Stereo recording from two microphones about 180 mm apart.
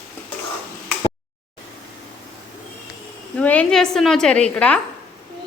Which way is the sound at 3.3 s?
5° left (ahead or behind).